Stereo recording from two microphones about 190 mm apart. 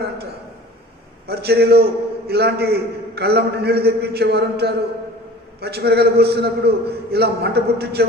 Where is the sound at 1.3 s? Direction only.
55° right (ahead or behind).